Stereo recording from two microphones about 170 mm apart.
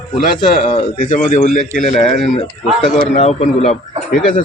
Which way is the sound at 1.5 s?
45° left (ahead or behind).